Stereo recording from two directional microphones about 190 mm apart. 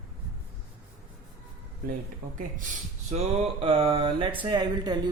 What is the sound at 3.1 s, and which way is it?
Speech, 35° right (ahead or behind).